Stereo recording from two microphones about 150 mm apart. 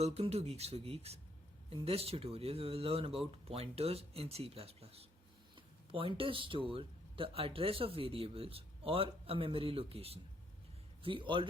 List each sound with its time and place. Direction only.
0.0 s speech: 45° right (ahead or behind)